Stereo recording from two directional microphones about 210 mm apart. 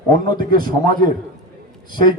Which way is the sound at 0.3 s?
20° left (ahead or behind).